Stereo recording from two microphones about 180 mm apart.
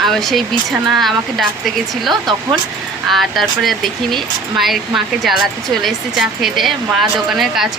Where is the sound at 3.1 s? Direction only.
Centre (ahead or behind).